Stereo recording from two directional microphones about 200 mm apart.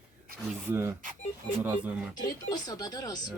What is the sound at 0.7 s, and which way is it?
Speech, 10° right (ahead or behind).